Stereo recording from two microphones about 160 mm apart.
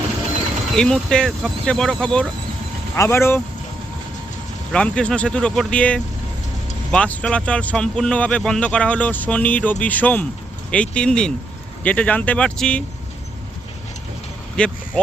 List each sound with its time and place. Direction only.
0.8 s speech: 5° left (ahead or behind)
4.7 s speech: 5° left (ahead or behind)
14.5 s vehicle: 5° left (ahead or behind)